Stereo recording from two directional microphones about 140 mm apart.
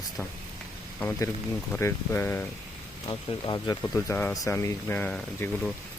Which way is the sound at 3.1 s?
35° left (ahead or behind).